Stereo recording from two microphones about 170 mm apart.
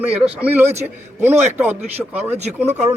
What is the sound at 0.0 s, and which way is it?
A man's voice, 5° right (ahead or behind).